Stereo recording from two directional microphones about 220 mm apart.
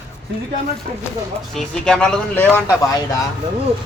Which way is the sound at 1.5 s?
5° left (ahead or behind).